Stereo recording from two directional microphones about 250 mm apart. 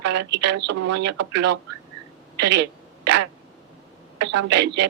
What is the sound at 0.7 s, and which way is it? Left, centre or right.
Speech, right.